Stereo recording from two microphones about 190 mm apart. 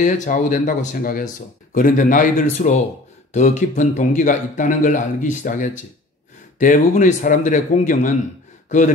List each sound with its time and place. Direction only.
0.0 s a man's voice: 40° left (ahead or behind)